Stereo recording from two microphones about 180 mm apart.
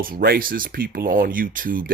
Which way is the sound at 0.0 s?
55° right (ahead or behind).